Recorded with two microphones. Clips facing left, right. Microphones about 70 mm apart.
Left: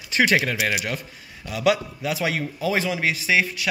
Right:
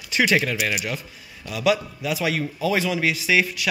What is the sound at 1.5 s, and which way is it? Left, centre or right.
A man's voice, left.